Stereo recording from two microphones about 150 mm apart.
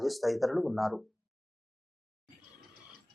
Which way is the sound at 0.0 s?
Centre (ahead or behind).